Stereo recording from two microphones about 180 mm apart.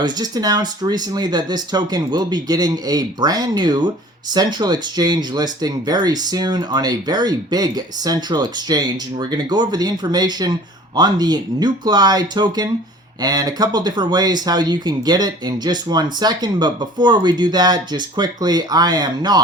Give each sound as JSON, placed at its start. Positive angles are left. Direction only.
{"t": 0.0, "sound": "speech", "side_deg": -20}